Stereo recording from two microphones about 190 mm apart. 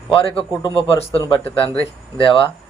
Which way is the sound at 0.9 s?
20° left (ahead or behind).